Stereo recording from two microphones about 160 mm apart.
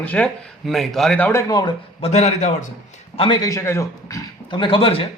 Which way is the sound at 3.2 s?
25° left (ahead or behind).